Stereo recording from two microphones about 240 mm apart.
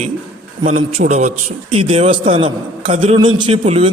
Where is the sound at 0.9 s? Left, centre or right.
Right.